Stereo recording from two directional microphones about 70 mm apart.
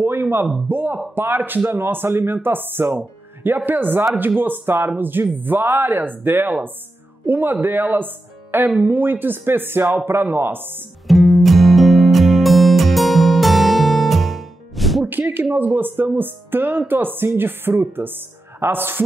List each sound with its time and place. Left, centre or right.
0.0 s a sound: right
0.7 s speech: right
11.1 s music: centre
15.0 s speech: right